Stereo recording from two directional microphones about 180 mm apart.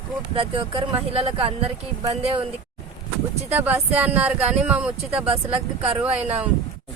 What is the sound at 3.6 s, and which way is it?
Speech, 10° right (ahead or behind).